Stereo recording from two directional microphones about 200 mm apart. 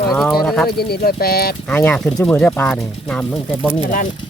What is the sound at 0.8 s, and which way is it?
Speech, 50° left (ahead or behind).